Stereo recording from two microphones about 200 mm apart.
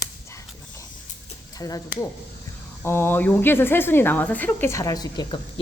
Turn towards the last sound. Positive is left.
turn(degrees=20)  # may be behind; listen again after turning